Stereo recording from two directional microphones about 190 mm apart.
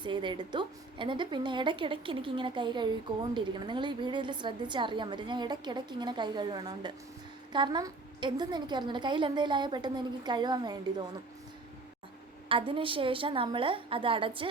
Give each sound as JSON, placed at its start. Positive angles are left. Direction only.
{"t": 0.0, "sound": "a woman's voice", "side_deg": -25}
{"t": 12.5, "sound": "a woman's voice", "side_deg": -30}